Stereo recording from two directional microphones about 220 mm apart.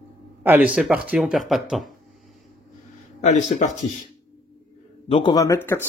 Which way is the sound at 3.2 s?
35° left (ahead or behind).